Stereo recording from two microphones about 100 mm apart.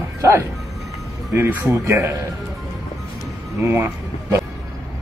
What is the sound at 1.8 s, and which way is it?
Speech, 30° right (ahead or behind).